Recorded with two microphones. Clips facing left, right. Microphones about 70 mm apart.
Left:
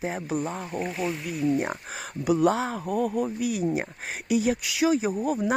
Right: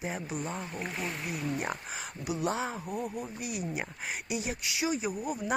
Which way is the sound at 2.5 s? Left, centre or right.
Left.